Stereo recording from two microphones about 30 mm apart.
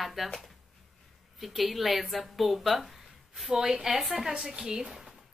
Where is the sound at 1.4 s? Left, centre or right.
Centre.